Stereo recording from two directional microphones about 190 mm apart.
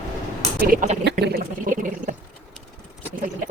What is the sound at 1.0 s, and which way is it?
Speech, 65° right (ahead or behind).